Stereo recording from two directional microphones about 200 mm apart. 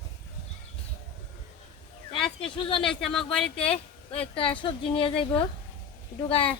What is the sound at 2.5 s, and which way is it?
Speech, 25° left (ahead or behind).